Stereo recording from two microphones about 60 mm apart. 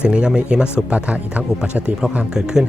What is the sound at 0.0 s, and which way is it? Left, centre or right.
Speech, centre.